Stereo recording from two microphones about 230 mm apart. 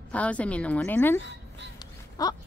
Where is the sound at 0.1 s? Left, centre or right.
Centre.